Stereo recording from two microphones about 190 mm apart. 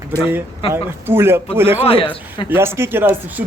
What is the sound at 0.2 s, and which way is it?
Speech, 10° right (ahead or behind).